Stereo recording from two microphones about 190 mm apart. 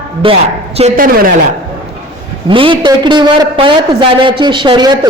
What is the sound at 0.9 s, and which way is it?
Speech, 50° right (ahead or behind).